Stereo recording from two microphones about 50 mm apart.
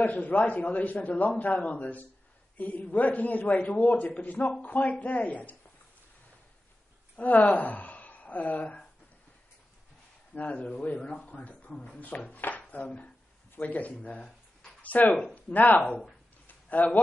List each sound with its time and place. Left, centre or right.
0.0 s a man's voice: left
7.2 s a woman's voice: left
10.3 s a man's voice: left
16.4 s a sound: left